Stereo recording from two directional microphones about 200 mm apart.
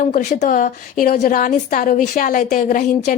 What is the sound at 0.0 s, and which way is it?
A woman's voice, 40° left (ahead or behind).